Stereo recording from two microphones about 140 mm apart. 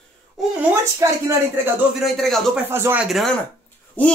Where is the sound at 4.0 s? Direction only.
10° left (ahead or behind).